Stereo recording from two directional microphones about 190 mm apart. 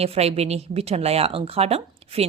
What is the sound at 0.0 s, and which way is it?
A woman's voice, 30° right (ahead or behind).